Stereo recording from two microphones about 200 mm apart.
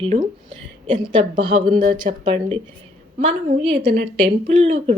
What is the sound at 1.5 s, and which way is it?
A woman's voice, 35° right (ahead or behind).